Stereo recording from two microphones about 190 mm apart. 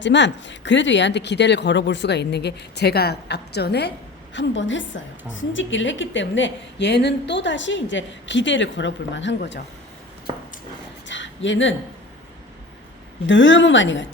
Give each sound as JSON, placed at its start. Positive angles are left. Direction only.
{"t": 0.0, "sound": "speech", "side_deg": 70}
{"t": 4.4, "sound": "a woman's voice", "side_deg": 70}
{"t": 11.1, "sound": "a sound", "side_deg": 75}
{"t": 13.2, "sound": "a woman's voice", "side_deg": 75}